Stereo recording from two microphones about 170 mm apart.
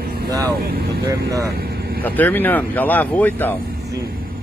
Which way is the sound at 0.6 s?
70° right (ahead or behind).